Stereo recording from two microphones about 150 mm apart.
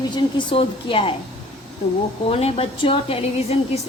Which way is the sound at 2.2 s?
40° left (ahead or behind).